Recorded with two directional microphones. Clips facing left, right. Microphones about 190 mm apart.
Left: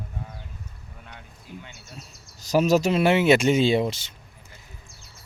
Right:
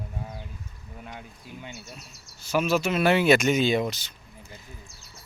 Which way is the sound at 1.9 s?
40° left (ahead or behind).